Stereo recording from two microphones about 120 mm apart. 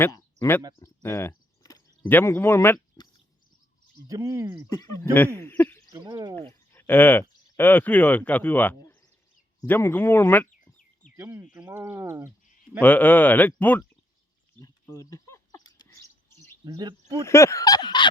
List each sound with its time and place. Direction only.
0.8 s speech: 20° left (ahead or behind)
3.0 s a sound: 30° left (ahead or behind)
4.0 s speech: 30° right (ahead or behind)
4.8 s speech: 25° left (ahead or behind)
5.4 s speech: 15° left (ahead or behind)
6.1 s speech: 30° right (ahead or behind)
6.7 s speech: 15° left (ahead or behind)
11.2 s speech: 25° right (ahead or behind)
11.4 s speech: 10° right (ahead or behind)
11.7 s speech: 20° right (ahead or behind)
12.8 s speech: 15° left (ahead or behind)
14.6 s a sound: 25° left (ahead or behind)
16.6 s speech: 35° right (ahead or behind)
17.2 s fowl: 25° left (ahead or behind); by 18.1 s 40° left (ahead or behind)